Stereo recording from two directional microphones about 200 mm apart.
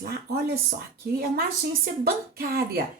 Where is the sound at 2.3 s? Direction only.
50° right (ahead or behind).